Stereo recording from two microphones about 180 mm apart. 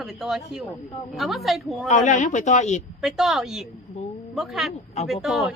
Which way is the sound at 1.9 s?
40° left (ahead or behind).